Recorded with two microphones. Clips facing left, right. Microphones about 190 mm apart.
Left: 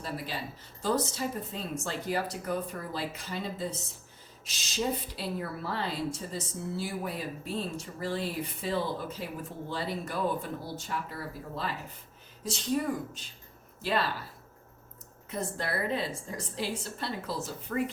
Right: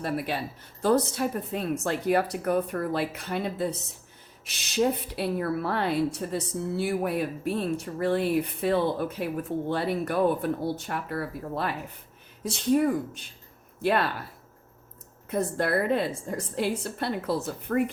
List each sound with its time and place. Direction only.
0.0 s a woman's voice: 60° right (ahead or behind)
15.3 s a woman's voice: 55° right (ahead or behind)